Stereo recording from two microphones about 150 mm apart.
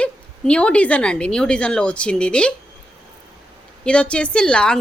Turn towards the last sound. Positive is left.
turn(degrees=5)  # may be behind; listen again after turning